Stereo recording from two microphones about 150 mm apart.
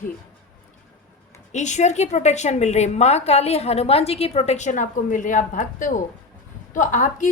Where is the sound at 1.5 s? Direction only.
50° left (ahead or behind).